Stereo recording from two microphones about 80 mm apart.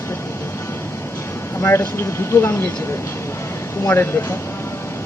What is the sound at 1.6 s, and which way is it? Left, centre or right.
Speech, left.